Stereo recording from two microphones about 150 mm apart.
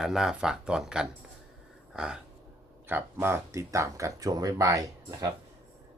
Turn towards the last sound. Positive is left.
turn(degrees=-25)  # may be behind; listen again after turning